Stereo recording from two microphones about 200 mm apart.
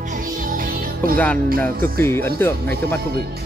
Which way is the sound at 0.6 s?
45° right (ahead or behind).